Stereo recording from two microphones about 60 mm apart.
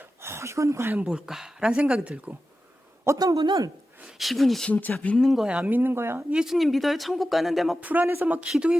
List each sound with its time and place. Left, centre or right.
0.2 s speech: right
1.0 s speech: centre
1.7 s speech: centre
3.2 s a man's voice: right
4.0 s speech: centre
4.7 s speech: left
5.1 s speech: centre
5.5 s speech: centre
5.7 s speech: right
6.3 s speech: centre
7.8 s speech: right
8.0 s speech: right
8.5 s speech: centre